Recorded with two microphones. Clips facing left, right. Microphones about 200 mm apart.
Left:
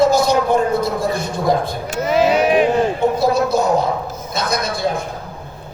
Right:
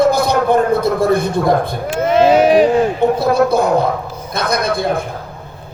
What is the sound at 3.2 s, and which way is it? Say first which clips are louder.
A man's voice: right 3 dB; 55° right (ahead or behind).